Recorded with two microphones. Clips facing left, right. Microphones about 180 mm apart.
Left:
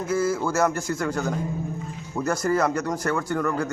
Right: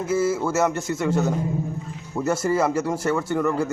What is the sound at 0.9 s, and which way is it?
Speech, 25° right (ahead or behind).